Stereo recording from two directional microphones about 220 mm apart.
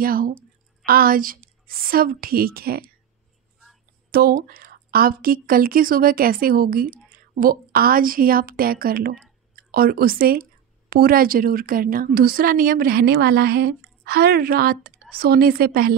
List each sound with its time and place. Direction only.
0.0 s a woman's voice: 40° right (ahead or behind)
4.1 s a woman's voice: 40° right (ahead or behind)